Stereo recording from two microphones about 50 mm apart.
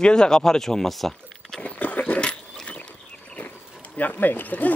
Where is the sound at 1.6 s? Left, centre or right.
Left.